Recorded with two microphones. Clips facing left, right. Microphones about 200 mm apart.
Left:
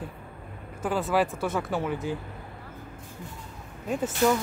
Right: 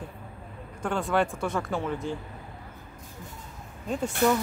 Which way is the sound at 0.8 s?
5° left (ahead or behind).